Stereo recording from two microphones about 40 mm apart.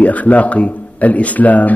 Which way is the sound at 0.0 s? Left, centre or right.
Left.